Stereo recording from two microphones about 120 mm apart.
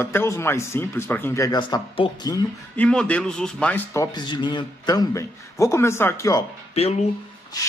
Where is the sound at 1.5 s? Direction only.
40° left (ahead or behind).